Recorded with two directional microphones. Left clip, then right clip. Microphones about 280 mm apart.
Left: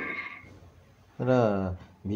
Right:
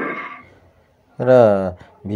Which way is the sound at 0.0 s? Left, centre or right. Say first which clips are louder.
Right 9 dB; right.